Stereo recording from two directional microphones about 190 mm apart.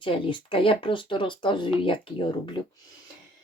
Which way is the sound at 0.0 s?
25° left (ahead or behind).